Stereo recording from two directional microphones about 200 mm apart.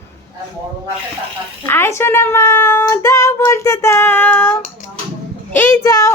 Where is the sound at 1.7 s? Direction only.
10° left (ahead or behind).